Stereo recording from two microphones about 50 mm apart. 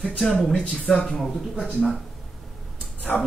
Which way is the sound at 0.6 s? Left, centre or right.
Centre.